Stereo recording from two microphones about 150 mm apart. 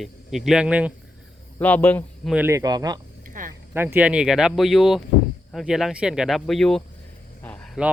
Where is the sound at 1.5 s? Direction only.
10° left (ahead or behind).